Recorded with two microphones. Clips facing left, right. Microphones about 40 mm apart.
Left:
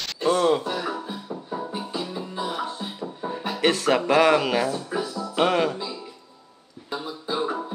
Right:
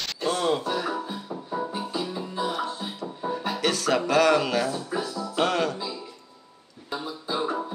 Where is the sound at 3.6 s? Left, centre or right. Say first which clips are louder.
Left 5 dB; centre.